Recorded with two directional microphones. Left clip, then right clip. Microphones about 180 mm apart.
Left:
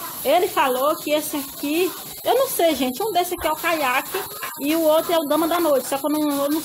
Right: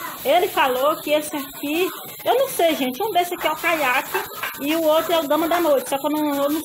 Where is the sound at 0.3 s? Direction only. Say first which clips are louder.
Right 1 dB; 15° left (ahead or behind).